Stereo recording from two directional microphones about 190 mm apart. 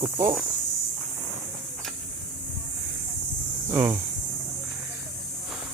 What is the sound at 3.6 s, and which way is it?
Speech, 10° right (ahead or behind).